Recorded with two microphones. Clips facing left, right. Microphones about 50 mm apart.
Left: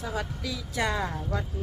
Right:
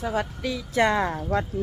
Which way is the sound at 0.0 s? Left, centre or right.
Right.